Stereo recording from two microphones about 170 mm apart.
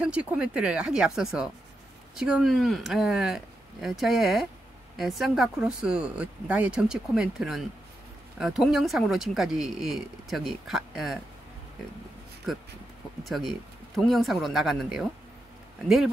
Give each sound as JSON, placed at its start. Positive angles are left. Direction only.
{"t": 0.0, "sound": "speech", "side_deg": -5}
{"t": 13.2, "sound": "speech", "side_deg": 0}